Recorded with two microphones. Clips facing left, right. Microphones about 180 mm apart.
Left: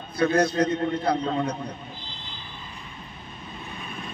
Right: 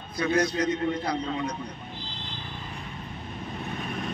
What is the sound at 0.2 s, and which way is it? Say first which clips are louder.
A man's voice: left 4 dB; 60° left (ahead or behind).